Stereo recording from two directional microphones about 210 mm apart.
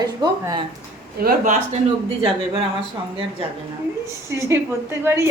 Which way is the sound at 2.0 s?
25° right (ahead or behind).